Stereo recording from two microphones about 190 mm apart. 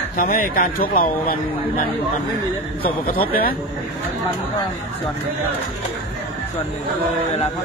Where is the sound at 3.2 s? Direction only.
50° left (ahead or behind).